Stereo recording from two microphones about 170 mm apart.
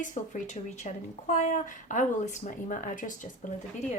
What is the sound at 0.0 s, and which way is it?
A woman's voice, 50° left (ahead or behind).